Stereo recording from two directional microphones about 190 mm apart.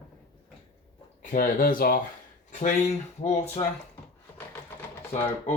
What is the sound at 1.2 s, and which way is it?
Speech, 45° left (ahead or behind).